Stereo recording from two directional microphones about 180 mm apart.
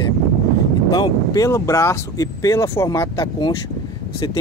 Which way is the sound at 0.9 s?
20° left (ahead or behind).